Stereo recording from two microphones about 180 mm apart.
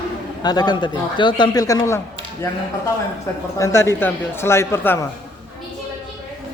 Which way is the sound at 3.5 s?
15° left (ahead or behind).